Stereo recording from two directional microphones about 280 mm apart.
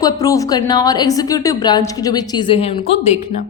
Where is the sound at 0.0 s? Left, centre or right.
Centre.